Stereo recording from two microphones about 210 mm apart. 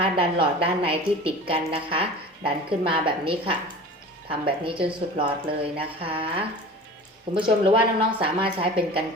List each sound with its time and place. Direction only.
0.0 s speech: 25° right (ahead or behind)